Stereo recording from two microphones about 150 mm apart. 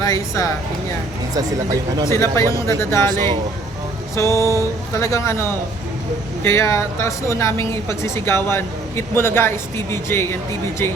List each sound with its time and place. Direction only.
0.0 s a woman's voice: 20° left (ahead or behind)
1.4 s speech: 25° right (ahead or behind)
2.0 s speech: 20° left (ahead or behind)
4.1 s a woman's voice: 20° left (ahead or behind)